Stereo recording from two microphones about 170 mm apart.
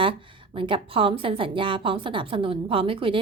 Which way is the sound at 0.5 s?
30° right (ahead or behind).